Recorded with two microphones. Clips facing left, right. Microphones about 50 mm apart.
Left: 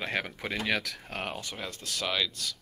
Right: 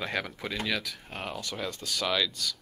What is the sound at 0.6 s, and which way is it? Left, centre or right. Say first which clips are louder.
Speech: left 2 dB; left.